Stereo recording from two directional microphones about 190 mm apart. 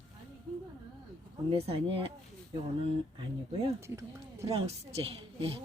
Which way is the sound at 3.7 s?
15° right (ahead or behind).